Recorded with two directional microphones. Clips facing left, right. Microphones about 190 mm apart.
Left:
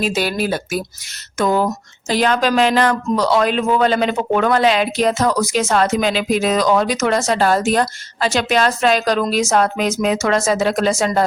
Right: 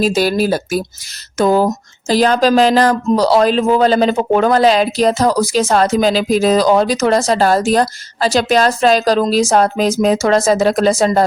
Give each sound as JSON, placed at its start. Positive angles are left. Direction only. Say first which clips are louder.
{"t": 0.0, "sound": "speech", "louder": "right 5 dB", "side_deg": -40}